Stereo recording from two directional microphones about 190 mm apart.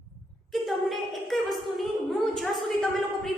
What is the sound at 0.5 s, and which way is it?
A woman's voice, centre (ahead or behind).